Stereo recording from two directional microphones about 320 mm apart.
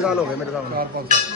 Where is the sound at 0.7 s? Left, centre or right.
Right.